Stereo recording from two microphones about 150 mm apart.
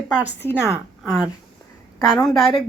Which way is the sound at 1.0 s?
5° right (ahead or behind).